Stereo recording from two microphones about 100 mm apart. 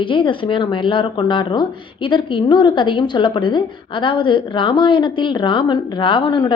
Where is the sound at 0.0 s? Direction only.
55° left (ahead or behind).